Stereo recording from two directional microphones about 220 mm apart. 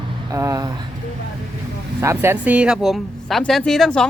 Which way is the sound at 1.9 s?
10° right (ahead or behind).